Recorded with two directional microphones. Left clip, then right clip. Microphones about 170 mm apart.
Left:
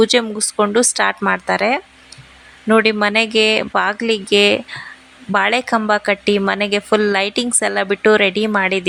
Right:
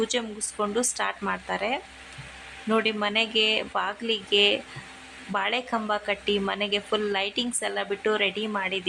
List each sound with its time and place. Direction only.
0.0 s speech: 40° left (ahead or behind)